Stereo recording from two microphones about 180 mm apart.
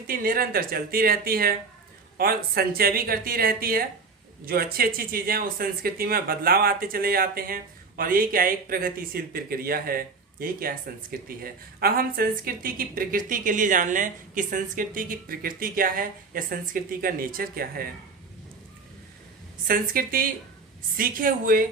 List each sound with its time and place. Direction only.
0.1 s a woman's voice: 55° right (ahead or behind)
19.6 s a woman's voice: 55° right (ahead or behind)